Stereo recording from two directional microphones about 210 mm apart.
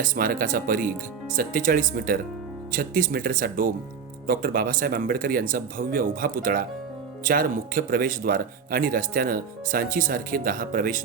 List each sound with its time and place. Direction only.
0.0 s speech: 45° right (ahead or behind)